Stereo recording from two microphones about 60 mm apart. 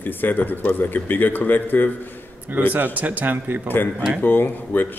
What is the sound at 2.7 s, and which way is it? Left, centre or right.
Speech, right.